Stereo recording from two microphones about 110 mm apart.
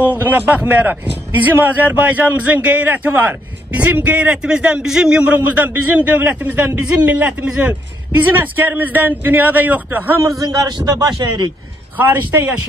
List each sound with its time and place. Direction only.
0.0 s a man's voice: 15° right (ahead or behind)
10.4 s a man's voice: 35° right (ahead or behind)
12.0 s a man's voice: 15° right (ahead or behind)